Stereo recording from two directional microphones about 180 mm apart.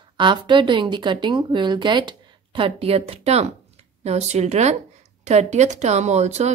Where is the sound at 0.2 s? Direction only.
25° right (ahead or behind).